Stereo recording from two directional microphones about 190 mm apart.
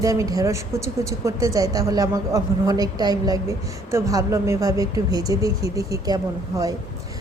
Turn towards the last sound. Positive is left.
turn(degrees=-20)  # may be behind; listen again after turning